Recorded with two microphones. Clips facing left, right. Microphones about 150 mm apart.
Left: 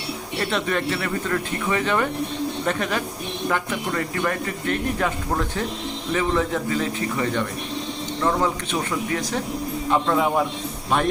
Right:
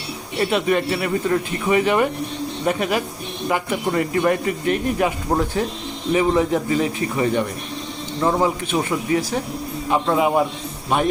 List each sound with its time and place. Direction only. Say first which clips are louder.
0.3 s speech: right 5 dB; 10° right (ahead or behind)